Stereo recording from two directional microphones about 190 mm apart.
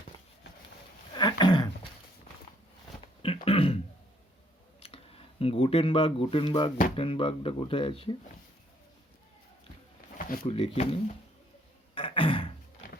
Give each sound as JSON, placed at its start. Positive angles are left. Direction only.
{"t": 1.1, "sound": "a sound", "side_deg": 25}
{"t": 3.4, "sound": "throat clearing", "side_deg": 30}
{"t": 4.8, "sound": "speech", "side_deg": 30}
{"t": 10.2, "sound": "a sound", "side_deg": 50}
{"t": 10.4, "sound": "speech", "side_deg": 30}
{"t": 11.9, "sound": "throat clearing", "side_deg": 30}